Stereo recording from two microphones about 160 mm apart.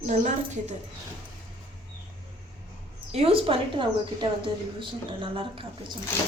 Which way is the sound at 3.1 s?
40° right (ahead or behind).